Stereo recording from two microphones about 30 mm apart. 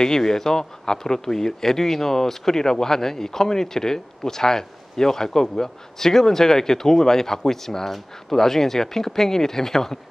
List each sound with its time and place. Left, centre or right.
0.0 s speech: centre